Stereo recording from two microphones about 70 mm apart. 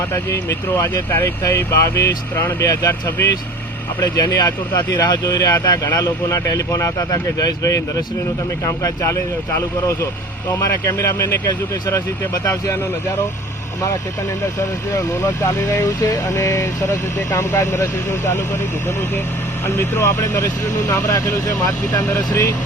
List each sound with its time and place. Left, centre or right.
1.2 s speech: left
2.6 s speech: left
10.5 s speech: left
14.9 s speech: left
16.0 s speech: left
17.2 s speech: left
19.6 s speech: left